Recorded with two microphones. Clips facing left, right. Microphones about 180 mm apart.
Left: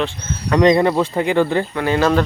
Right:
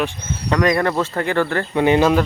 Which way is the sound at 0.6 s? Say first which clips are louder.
Left 5 dB; 20° left (ahead or behind).